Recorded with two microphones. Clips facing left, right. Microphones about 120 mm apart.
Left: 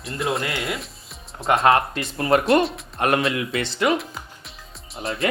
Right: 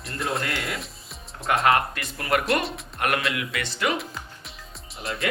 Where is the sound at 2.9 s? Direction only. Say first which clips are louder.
Left 5 dB; 30° left (ahead or behind).